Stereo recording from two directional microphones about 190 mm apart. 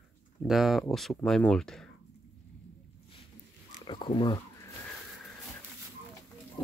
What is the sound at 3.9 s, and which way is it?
Speech, 25° left (ahead or behind).